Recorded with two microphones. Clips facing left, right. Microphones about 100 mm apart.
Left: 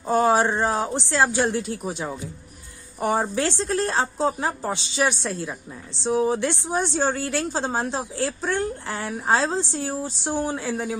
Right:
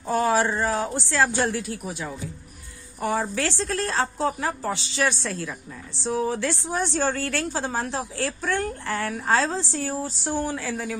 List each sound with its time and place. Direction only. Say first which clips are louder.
0.1 s a woman's voice: left 3 dB; 25° left (ahead or behind)